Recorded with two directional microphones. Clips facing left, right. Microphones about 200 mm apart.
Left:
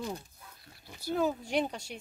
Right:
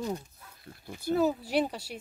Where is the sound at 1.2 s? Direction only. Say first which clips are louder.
Right 3 dB; 5° right (ahead or behind).